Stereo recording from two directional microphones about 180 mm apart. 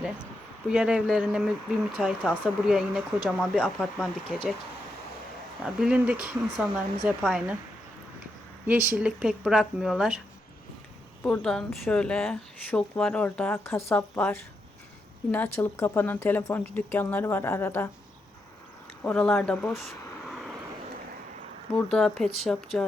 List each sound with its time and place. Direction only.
0.7 s speech: 5° right (ahead or behind)
5.6 s speech: 5° right (ahead or behind)
8.6 s speech: 10° right (ahead or behind)
11.2 s a woman's voice: 5° left (ahead or behind)
15.5 s a woman's voice: 10° left (ahead or behind)
19.0 s speech: 5° left (ahead or behind)
20.2 s vehicle: centre (ahead or behind)
21.8 s speech: 5° left (ahead or behind)